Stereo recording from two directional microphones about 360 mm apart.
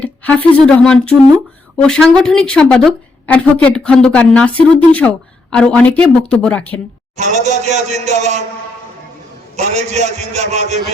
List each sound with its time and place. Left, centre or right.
0.0 s a woman's voice: centre
7.2 s a man's voice: centre
9.6 s a man's voice: centre